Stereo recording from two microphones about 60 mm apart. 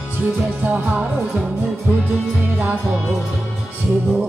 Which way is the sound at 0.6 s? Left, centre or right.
Right.